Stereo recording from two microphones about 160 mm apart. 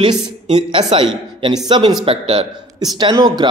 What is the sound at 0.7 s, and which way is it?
A man's voice, 30° right (ahead or behind).